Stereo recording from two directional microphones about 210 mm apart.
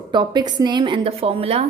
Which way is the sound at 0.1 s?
20° right (ahead or behind).